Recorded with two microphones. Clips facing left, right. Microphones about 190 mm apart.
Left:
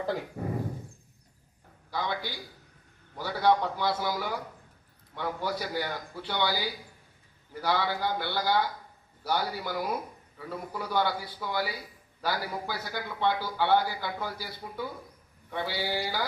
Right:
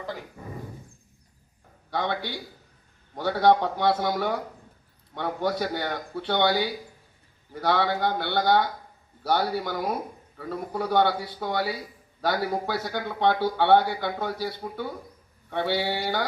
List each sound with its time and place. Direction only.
0.4 s dog: 45° left (ahead or behind)
1.9 s a man's voice: 65° right (ahead or behind)